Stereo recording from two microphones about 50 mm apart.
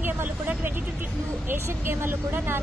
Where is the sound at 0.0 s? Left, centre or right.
Right.